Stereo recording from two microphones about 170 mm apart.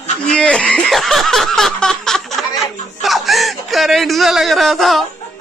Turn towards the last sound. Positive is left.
turn(degrees=0)  # may be behind; listen again after turning